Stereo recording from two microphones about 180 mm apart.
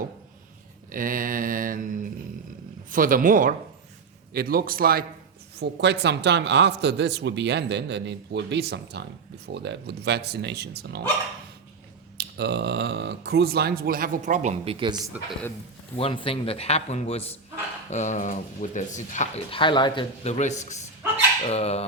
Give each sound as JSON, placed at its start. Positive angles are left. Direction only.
{"t": 0.9, "sound": "mantra", "side_deg": -50}
{"t": 4.4, "sound": "speech", "side_deg": -55}
{"t": 5.5, "sound": "speech", "side_deg": -70}
{"t": 12.1, "sound": "speech", "side_deg": -65}
{"t": 16.0, "sound": "a man's voice", "side_deg": 30}
{"t": 19.5, "sound": "a man's voice", "side_deg": 25}